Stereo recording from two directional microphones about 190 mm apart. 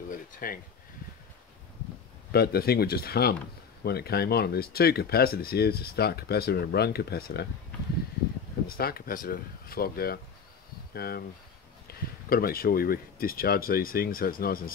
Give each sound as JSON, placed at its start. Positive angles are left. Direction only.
{"t": 0.1, "sound": "a sound", "side_deg": 50}
{"t": 2.3, "sound": "speech", "side_deg": 55}
{"t": 8.6, "sound": "speech", "side_deg": 50}